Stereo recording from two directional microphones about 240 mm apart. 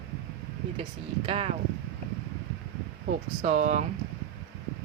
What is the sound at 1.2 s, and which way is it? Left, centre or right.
Speech, right.